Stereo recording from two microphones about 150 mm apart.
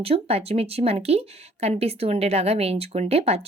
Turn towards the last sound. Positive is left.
turn(degrees=-40)  # may be behind; listen again after turning